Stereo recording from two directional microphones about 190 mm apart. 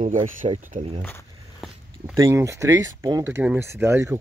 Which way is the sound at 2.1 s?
15° right (ahead or behind).